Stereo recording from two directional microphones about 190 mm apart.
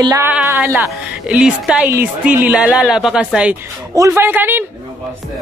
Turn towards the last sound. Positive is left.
turn(degrees=-10)  # may be behind; listen again after turning